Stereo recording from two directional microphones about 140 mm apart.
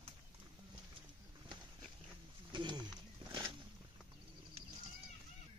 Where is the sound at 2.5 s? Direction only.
35° right (ahead or behind).